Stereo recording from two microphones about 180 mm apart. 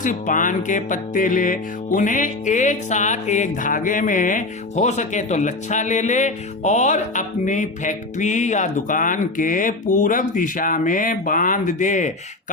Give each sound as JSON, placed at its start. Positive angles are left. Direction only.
{"t": 0.0, "sound": "music", "side_deg": 45}